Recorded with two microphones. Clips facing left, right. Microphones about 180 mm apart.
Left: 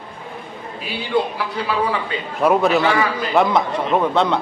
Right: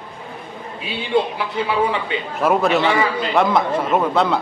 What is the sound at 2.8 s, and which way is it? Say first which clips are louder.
Speech: even; 25° right (ahead or behind).